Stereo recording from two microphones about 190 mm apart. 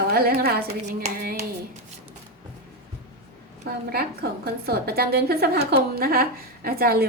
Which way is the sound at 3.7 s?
55° right (ahead or behind).